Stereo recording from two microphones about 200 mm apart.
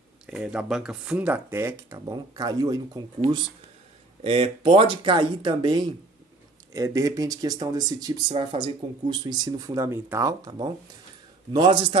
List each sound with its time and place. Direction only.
0.3 s speech: 5° right (ahead or behind)
4.2 s speech: 30° right (ahead or behind)